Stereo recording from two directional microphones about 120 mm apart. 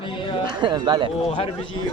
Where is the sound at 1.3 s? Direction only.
45° left (ahead or behind).